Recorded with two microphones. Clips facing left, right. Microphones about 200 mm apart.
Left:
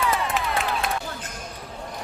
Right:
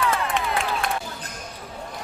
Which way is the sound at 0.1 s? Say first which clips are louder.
Even; centre (ahead or behind).